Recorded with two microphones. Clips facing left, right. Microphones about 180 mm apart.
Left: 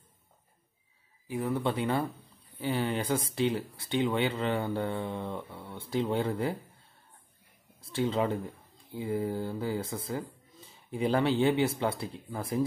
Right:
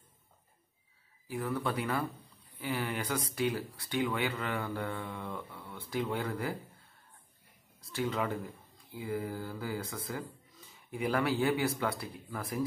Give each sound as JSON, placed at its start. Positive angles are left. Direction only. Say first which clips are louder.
{"t": 1.2, "sound": "speech", "louder": "left 4 dB", "side_deg": 20}
{"t": 7.8, "sound": "speech", "louder": "left 5 dB", "side_deg": 30}